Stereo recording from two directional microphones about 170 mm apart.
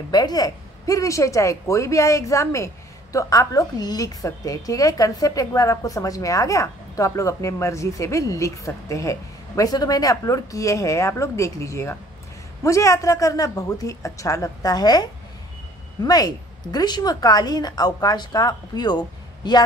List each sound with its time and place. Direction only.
0.1 s speech: 25° left (ahead or behind)